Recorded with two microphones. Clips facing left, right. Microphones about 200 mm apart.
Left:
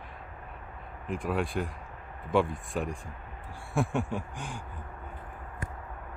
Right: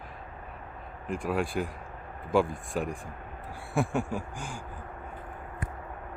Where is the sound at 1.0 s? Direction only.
Centre (ahead or behind).